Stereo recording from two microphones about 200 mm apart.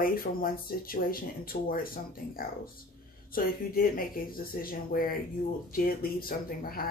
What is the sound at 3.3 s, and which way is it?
Speech, 45° left (ahead or behind).